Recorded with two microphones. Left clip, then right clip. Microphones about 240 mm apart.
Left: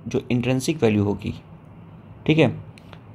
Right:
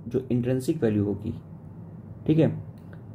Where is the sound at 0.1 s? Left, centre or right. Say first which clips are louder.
Left 3 dB; centre.